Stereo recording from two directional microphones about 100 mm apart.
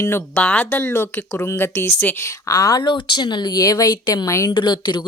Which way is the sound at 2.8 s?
55° left (ahead or behind).